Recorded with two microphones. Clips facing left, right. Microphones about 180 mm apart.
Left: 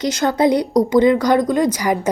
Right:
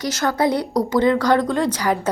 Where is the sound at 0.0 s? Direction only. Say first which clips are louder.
Left 4 dB; 20° left (ahead or behind).